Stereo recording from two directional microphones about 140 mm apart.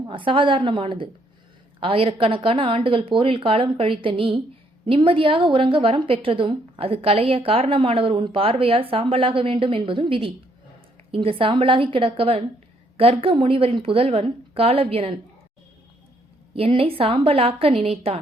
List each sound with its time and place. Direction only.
0.1 s a woman's voice: 35° right (ahead or behind)
16.6 s a woman's voice: 45° right (ahead or behind)